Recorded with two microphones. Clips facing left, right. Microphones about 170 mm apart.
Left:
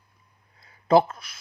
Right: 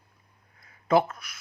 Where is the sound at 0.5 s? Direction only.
30° left (ahead or behind).